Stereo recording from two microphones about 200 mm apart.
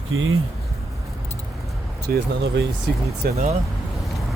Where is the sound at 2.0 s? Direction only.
50° right (ahead or behind).